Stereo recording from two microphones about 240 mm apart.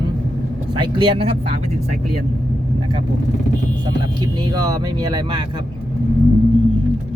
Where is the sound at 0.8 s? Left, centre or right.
Centre.